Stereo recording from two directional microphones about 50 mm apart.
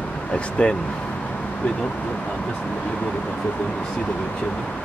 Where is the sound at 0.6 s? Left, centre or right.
Left.